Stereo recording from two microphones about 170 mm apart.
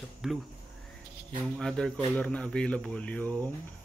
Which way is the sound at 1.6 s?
5° left (ahead or behind).